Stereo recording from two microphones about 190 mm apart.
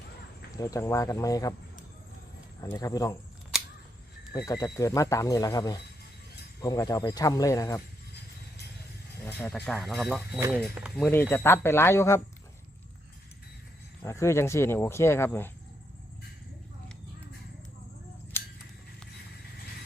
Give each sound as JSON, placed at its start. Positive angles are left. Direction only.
{"t": 0.5, "sound": "speech", "side_deg": 20}
{"t": 2.6, "sound": "speech", "side_deg": 20}
{"t": 4.4, "sound": "speech", "side_deg": 15}
{"t": 9.2, "sound": "speech", "side_deg": 10}
{"t": 10.9, "sound": "speech", "side_deg": 10}
{"t": 14.0, "sound": "speech", "side_deg": 15}